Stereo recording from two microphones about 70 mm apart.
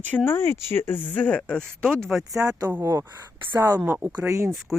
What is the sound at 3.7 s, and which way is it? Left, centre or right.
Speech, right.